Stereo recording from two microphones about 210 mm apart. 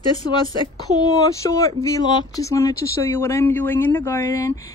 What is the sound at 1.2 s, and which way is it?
Speech, 15° left (ahead or behind).